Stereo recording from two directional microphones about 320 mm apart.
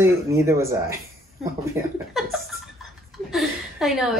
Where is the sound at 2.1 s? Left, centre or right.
Centre.